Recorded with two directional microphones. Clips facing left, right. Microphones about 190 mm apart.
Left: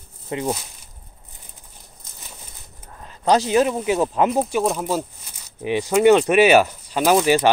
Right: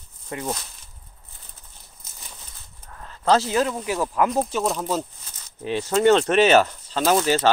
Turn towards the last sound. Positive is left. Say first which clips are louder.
# left 3 dB
turn(degrees=15)  # may be behind; listen again after turning